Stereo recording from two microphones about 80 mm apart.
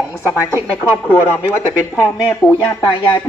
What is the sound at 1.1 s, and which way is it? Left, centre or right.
Speech, left.